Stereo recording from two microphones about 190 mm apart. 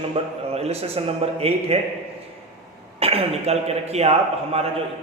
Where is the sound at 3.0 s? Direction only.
30° right (ahead or behind).